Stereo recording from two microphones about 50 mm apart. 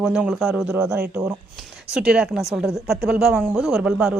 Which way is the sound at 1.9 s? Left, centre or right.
Right.